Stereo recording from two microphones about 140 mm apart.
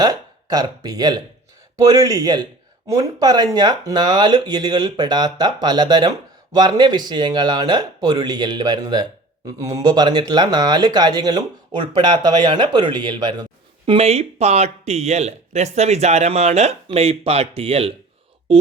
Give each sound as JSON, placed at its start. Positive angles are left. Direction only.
{"t": 0.0, "sound": "speech", "side_deg": -25}
{"t": 13.8, "sound": "speech", "side_deg": -45}